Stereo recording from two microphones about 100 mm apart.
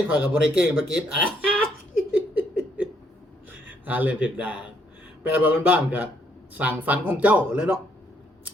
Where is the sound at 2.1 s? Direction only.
15° right (ahead or behind).